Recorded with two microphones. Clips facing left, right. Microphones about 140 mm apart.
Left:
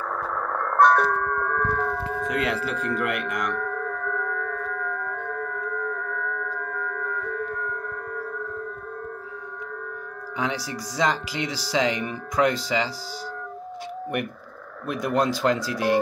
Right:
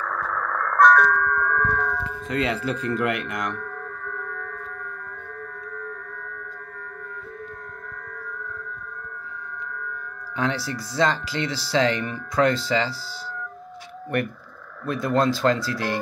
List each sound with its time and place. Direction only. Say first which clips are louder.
0.0 s music: even; 20° left (ahead or behind)
2.3 s speech: right 4 dB; 5° left (ahead or behind)
5.4 s a sound: left 5 dB; 90° left
10.3 s speech: right 2 dB; 15° left (ahead or behind)
14.9 s speech: right 2 dB; 15° left (ahead or behind)